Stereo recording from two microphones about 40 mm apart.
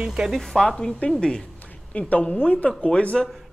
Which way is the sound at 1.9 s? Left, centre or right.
Left.